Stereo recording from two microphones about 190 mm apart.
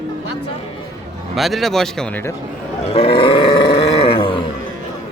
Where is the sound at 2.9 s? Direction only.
30° left (ahead or behind).